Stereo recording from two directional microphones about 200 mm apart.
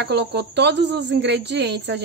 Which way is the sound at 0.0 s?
55° right (ahead or behind).